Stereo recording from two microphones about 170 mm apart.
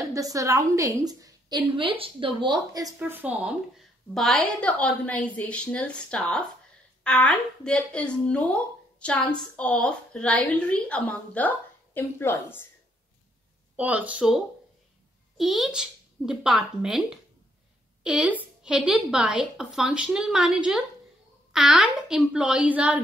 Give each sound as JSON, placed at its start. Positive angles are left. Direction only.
{"t": 0.0, "sound": "a woman's voice", "side_deg": -20}
{"t": 4.1, "sound": "a woman's voice", "side_deg": 5}
{"t": 13.7, "sound": "a woman's voice", "side_deg": -10}